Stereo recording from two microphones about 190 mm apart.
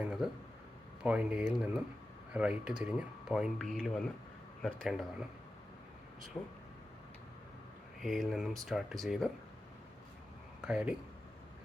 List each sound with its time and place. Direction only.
0.0 s a sound: 5° right (ahead or behind)
1.0 s speech: 5° right (ahead or behind)
6.3 s speech: 15° left (ahead or behind)
8.0 s speech: centre (ahead or behind)
10.7 s speech: 5° right (ahead or behind)